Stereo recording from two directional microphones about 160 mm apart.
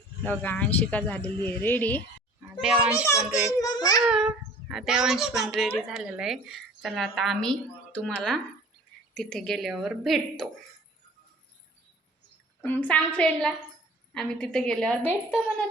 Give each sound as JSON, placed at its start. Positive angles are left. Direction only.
{"t": 0.3, "sound": "speech", "side_deg": 10}
{"t": 2.6, "sound": "a child's voice", "side_deg": -5}
{"t": 3.6, "sound": "speech", "side_deg": 25}
{"t": 4.0, "sound": "speech", "side_deg": -5}
{"t": 9.1, "sound": "speech", "side_deg": 5}
{"t": 12.6, "sound": "speech", "side_deg": 10}